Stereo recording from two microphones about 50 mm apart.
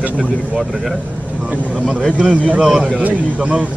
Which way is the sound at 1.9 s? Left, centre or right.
Centre.